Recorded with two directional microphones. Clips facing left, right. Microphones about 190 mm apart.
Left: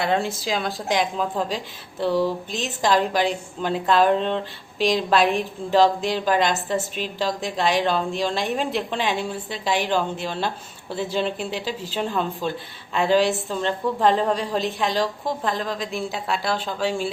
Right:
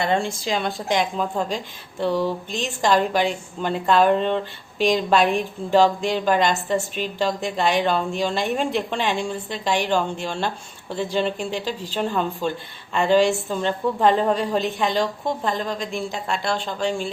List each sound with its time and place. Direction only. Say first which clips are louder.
0.0 s a woman's voice: even; 5° left (ahead or behind)